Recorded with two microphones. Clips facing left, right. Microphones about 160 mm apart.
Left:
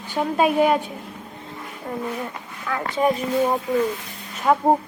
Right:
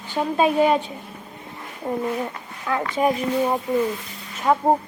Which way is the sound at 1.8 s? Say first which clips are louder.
Right 4 dB; 25° right (ahead or behind).